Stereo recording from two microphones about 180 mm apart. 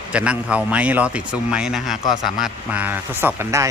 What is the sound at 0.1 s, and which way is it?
A man's voice, 5° right (ahead or behind).